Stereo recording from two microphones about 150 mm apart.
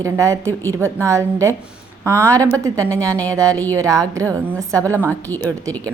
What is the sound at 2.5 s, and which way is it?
A woman's voice, 20° right (ahead or behind).